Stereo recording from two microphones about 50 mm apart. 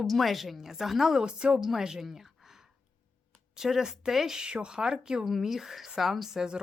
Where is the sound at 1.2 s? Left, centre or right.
Centre.